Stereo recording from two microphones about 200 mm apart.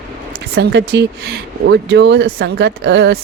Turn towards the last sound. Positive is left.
turn(degrees=-55)  # may be behind; listen again after turning